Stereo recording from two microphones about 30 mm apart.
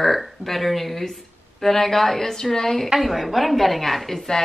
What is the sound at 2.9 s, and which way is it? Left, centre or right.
Speech, centre.